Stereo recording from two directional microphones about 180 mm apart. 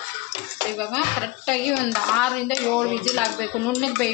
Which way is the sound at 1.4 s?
5° left (ahead or behind).